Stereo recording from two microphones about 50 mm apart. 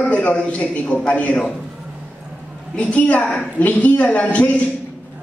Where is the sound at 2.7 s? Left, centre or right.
Left.